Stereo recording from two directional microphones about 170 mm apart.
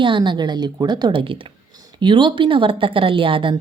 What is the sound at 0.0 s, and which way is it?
Speech, 30° right (ahead or behind).